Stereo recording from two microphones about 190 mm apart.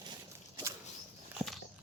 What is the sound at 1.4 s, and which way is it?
Biting, 20° right (ahead or behind).